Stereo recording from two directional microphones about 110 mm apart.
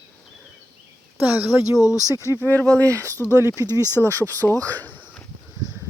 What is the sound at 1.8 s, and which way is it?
Speech, 30° left (ahead or behind).